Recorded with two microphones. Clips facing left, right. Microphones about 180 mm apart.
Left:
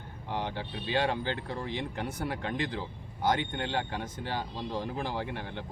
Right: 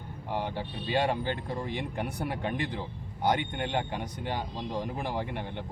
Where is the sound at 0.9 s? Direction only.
15° right (ahead or behind).